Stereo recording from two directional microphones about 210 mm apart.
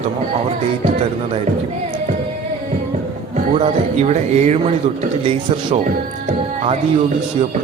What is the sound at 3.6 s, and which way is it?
A man's voice, 30° right (ahead or behind).